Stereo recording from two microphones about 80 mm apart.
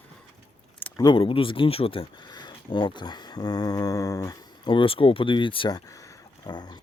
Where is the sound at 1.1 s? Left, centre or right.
Left.